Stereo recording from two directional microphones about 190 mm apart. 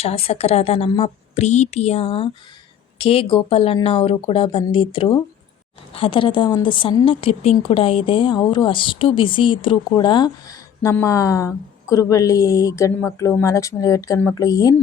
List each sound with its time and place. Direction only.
0.0 s a woman's voice: 30° left (ahead or behind)